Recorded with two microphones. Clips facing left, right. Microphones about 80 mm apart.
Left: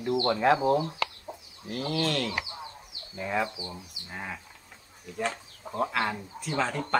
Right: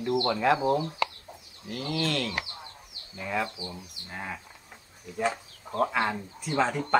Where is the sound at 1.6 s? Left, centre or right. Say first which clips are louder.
Left 1 dB; left.